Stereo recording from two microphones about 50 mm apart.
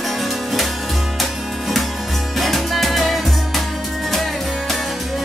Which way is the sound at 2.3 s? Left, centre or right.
Centre.